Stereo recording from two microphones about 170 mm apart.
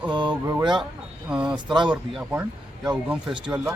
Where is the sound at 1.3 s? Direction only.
5° right (ahead or behind).